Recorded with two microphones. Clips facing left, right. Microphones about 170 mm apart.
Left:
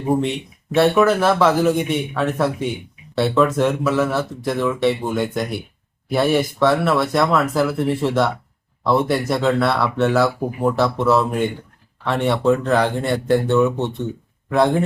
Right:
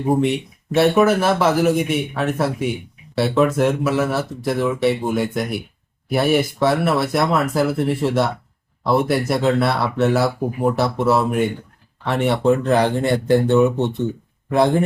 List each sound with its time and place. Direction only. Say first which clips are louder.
0.7 s speech: even; 10° right (ahead or behind)